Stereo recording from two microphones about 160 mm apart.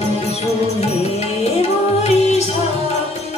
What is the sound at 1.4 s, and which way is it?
Music, 40° left (ahead or behind).